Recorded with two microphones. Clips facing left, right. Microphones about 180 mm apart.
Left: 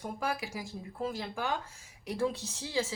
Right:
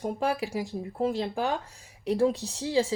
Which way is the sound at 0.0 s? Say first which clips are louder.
Right 7 dB; 35° right (ahead or behind).